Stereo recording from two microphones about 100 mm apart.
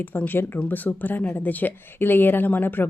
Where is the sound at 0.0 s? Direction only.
20° left (ahead or behind).